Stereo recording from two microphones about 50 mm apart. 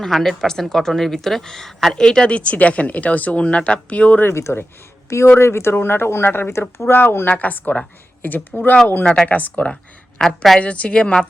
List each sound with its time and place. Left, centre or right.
0.0 s speech: centre
2.3 s speech: left
4.3 s speech: left
5.4 s speech: left
5.7 s speech: left
6.5 s speech: left
7.3 s speech: left
10.2 s a woman's voice: centre
10.6 s speech: left